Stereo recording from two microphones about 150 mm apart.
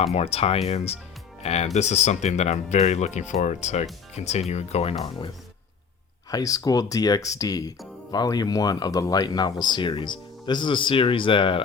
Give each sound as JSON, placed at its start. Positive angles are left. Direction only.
{"t": 0.0, "sound": "speech", "side_deg": 45}
{"t": 6.3, "sound": "speech", "side_deg": 25}